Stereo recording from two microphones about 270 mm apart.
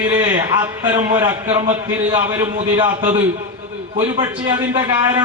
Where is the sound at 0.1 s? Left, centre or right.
Centre.